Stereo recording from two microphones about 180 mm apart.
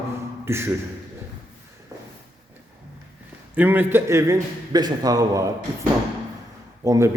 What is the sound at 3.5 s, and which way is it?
A man's voice, 10° right (ahead or behind).